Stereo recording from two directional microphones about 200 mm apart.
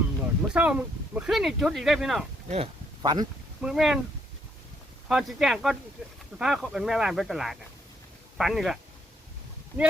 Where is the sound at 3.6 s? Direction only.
5° right (ahead or behind).